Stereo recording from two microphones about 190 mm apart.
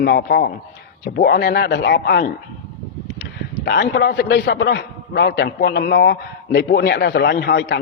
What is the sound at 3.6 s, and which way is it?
A man's voice, 60° left (ahead or behind).